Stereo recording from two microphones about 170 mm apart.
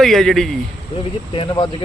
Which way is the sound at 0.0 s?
Centre (ahead or behind).